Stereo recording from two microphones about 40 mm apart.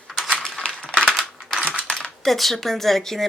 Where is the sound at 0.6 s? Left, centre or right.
Centre.